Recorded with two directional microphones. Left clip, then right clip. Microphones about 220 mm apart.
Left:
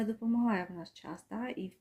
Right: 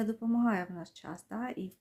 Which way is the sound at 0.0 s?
15° right (ahead or behind).